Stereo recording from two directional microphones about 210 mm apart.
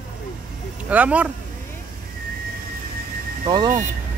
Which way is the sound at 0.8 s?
5° right (ahead or behind).